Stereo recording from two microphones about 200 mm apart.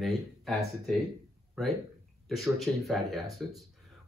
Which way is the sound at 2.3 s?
Centre (ahead or behind).